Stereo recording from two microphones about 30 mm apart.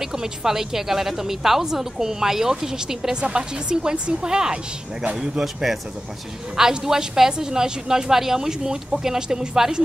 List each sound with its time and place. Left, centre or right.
0.0 s a woman's voice: centre
3.0 s speech: right
5.4 s a woman's voice: centre; by 9.6 s right